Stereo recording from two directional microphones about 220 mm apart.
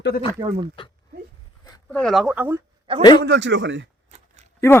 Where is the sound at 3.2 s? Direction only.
50° right (ahead or behind).